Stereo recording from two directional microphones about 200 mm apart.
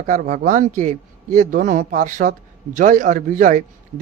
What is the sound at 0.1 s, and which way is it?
A man's voice, 40° right (ahead or behind).